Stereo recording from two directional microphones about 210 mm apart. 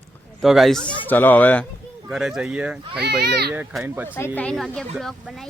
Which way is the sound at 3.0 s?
50° right (ahead or behind).